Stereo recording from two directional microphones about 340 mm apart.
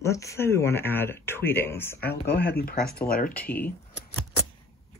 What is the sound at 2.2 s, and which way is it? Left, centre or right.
Speech, left.